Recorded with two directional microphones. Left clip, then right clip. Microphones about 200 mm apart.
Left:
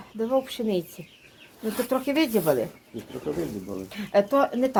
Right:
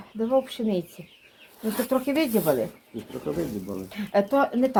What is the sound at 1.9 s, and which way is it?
Speech, 15° left (ahead or behind).